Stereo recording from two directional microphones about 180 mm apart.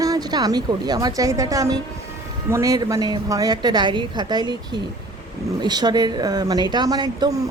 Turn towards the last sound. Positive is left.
turn(degrees=-20)  # may be behind; listen again after turning